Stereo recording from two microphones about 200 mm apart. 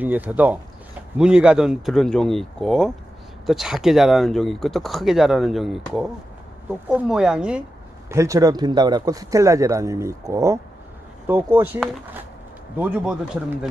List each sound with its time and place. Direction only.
0.0 s speech: 10° right (ahead or behind)
8.1 s speech: 15° right (ahead or behind)